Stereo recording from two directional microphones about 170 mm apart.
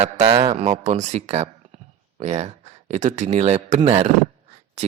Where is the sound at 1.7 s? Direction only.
35° right (ahead or behind).